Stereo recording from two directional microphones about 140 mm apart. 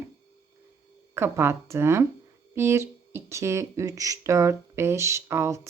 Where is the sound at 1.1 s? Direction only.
15° right (ahead or behind).